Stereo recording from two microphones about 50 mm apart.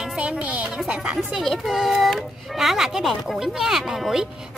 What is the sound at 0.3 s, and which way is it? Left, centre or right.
Speech, right.